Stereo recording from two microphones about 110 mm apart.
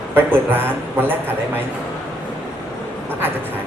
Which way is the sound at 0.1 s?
20° right (ahead or behind).